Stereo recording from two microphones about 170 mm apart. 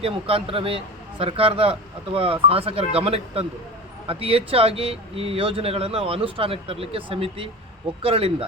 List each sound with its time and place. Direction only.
0.0 s speech: 35° right (ahead or behind)